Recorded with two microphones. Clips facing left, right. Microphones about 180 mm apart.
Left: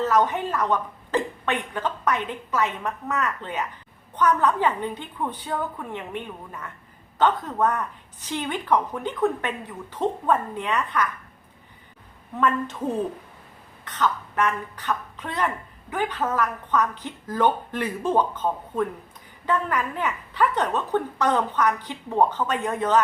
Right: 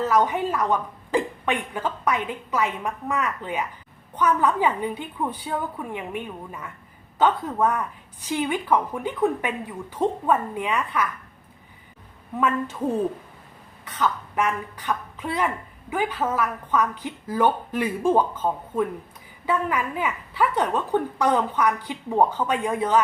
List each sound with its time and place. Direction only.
0.0 s speech: 10° right (ahead or behind)
12.4 s speech: 10° right (ahead or behind)
13.8 s speech: 10° right (ahead or behind)